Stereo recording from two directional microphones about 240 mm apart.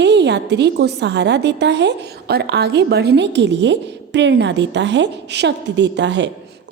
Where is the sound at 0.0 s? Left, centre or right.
Right.